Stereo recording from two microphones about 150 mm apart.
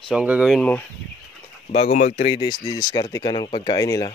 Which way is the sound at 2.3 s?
30° left (ahead or behind).